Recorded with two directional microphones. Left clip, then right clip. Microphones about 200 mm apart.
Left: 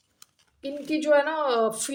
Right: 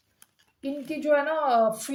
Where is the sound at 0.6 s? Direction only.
45° left (ahead or behind).